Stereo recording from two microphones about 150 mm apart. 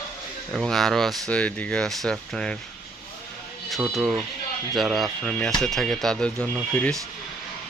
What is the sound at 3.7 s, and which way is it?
Speech, centre (ahead or behind).